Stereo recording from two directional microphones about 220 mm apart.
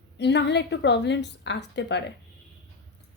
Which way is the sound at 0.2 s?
50° left (ahead or behind).